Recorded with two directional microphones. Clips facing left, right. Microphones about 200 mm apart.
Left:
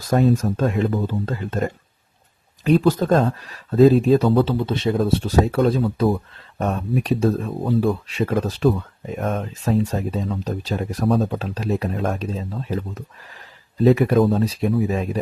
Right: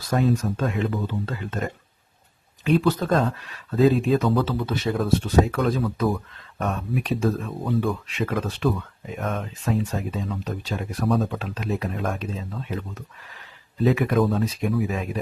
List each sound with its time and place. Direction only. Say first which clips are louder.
0.0 s speech: left 4 dB; 40° left (ahead or behind)
2.6 s speech: left 4 dB; 40° left (ahead or behind)
5.2 s speech: left 3 dB; 35° left (ahead or behind)